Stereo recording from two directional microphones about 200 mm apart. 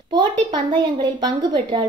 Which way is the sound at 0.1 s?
25° right (ahead or behind).